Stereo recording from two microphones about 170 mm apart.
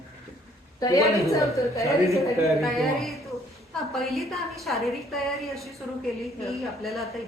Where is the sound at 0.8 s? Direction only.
20° left (ahead or behind).